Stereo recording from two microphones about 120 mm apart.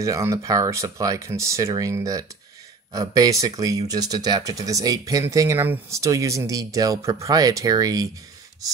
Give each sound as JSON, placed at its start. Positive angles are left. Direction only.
{"t": 0.0, "sound": "speech", "side_deg": -25}